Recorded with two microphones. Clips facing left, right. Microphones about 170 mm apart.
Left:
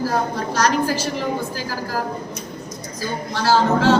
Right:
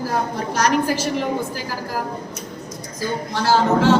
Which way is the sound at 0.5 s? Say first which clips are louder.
Right 1 dB; 20° right (ahead or behind).